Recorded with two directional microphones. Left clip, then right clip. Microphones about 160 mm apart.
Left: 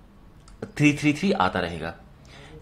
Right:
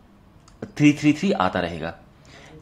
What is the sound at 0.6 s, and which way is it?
Speech, 15° right (ahead or behind).